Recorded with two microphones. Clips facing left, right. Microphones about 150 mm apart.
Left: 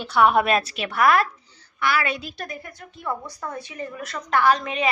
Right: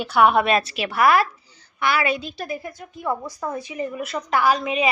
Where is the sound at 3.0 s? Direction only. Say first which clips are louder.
Right 4 dB; 10° right (ahead or behind).